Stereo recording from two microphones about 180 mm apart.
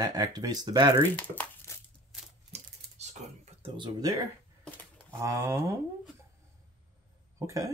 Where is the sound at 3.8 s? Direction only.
20° right (ahead or behind).